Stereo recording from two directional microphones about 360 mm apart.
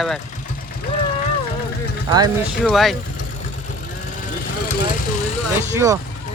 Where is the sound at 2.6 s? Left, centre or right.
Centre.